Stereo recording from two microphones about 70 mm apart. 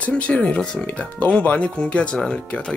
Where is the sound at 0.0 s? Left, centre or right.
Centre.